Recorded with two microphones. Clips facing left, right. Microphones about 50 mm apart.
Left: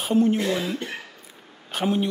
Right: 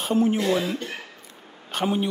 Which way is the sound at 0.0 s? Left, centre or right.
Centre.